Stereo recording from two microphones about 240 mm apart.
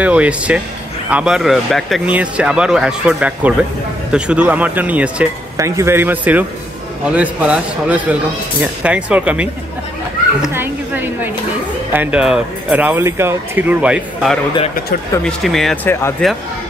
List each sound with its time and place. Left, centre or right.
0.0 s speech: centre